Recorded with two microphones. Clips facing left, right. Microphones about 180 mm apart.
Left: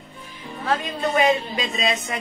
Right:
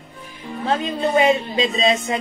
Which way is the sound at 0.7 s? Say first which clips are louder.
Right 3 dB; 25° right (ahead or behind).